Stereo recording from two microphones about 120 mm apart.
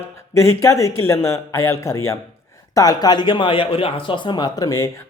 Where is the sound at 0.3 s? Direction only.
25° left (ahead or behind).